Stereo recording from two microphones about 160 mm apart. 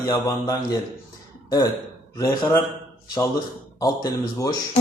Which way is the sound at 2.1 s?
20° left (ahead or behind).